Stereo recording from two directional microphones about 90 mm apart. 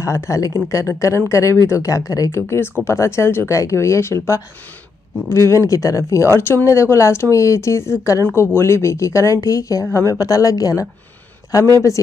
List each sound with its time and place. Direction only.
0.0 s speech: 30° left (ahead or behind)